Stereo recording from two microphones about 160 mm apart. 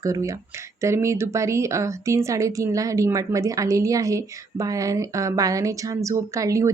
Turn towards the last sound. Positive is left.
turn(degrees=-20)  # may be behind; listen again after turning